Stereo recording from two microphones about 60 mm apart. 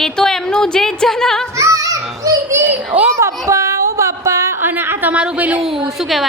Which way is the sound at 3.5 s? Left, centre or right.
Right.